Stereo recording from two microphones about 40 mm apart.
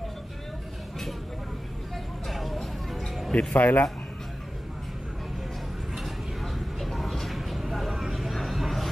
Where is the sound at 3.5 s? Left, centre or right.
Left.